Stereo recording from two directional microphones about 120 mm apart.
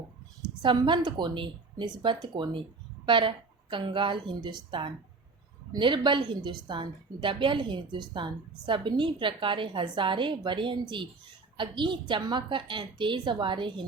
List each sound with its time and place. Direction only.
0.6 s a woman's voice: 40° right (ahead or behind)